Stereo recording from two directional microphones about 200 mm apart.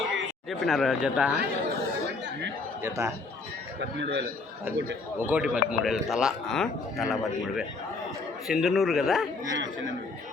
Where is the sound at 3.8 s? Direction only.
60° right (ahead or behind).